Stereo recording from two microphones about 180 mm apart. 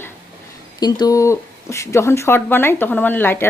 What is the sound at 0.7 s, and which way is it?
A woman's voice, 25° left (ahead or behind).